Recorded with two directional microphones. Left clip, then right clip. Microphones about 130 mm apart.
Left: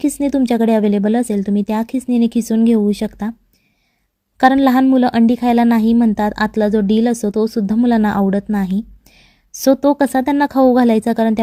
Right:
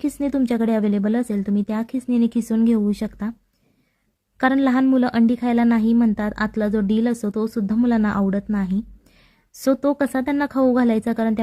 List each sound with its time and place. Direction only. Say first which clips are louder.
0.0 s speech: left 6 dB; 35° left (ahead or behind)
4.4 s speech: left 7 dB; 35° left (ahead or behind)